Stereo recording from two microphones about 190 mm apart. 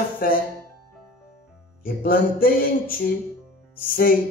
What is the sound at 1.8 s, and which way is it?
Speech, 50° left (ahead or behind).